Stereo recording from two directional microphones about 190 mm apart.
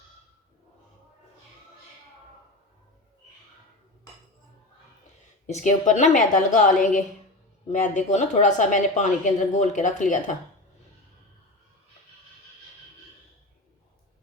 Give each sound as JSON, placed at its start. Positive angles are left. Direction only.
{"t": 5.5, "sound": "a woman's voice", "side_deg": 40}